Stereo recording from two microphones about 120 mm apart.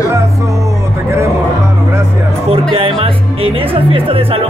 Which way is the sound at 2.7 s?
50° right (ahead or behind).